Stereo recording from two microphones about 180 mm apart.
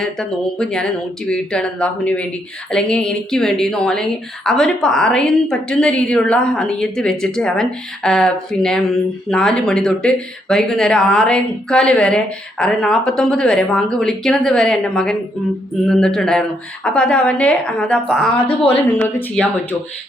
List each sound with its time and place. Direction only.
0.0 s a woman's voice: 5° left (ahead or behind)
18.4 s a woman's voice: 30° left (ahead or behind)
18.9 s speech: 5° left (ahead or behind)